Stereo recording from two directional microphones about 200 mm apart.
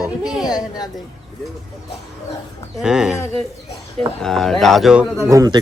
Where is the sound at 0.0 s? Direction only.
Centre (ahead or behind).